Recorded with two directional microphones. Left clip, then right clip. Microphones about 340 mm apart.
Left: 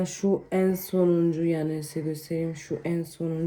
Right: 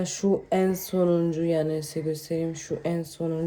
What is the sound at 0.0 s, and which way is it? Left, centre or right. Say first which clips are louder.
Speech: right 1 dB; centre.